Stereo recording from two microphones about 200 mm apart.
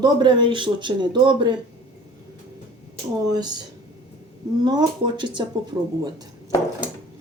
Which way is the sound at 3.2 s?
20° right (ahead or behind).